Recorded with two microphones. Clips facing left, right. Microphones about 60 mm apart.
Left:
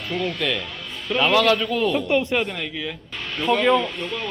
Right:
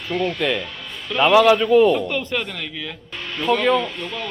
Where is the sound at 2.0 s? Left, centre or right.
Centre.